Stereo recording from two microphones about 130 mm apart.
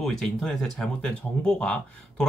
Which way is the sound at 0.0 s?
5° left (ahead or behind).